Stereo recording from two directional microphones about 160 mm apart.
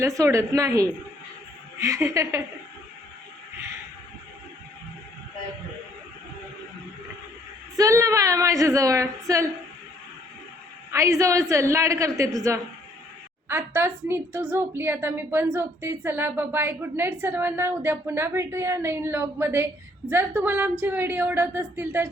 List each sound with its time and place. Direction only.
0.0 s a woman's voice: 20° right (ahead or behind)
7.8 s a woman's voice: 20° right (ahead or behind)
10.9 s a woman's voice: 20° right (ahead or behind)